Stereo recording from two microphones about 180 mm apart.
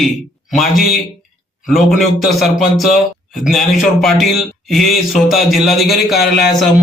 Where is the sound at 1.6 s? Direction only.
Centre (ahead or behind).